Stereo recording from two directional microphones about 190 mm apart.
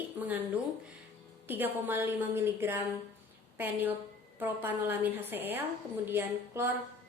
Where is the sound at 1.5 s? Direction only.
10° right (ahead or behind).